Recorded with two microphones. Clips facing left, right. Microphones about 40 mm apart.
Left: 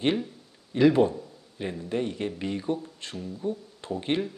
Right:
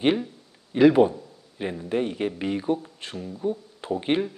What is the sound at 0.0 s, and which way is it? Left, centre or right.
Speech, centre.